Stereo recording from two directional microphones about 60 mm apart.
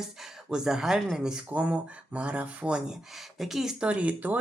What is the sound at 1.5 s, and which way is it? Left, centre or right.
Speech, right.